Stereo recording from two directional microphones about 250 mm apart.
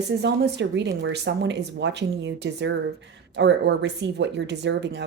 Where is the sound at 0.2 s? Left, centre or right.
Right.